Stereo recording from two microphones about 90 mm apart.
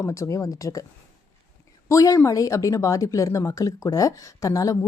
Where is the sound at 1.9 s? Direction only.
35° left (ahead or behind).